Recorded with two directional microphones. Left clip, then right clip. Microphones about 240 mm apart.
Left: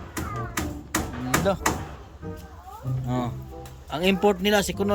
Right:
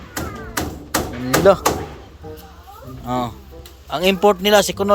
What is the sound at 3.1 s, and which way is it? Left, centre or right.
Speech, centre.